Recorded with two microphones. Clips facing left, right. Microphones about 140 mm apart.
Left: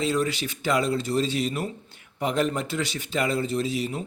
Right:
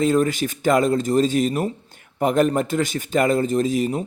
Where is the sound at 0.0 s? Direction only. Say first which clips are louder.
Right 7 dB; 50° right (ahead or behind).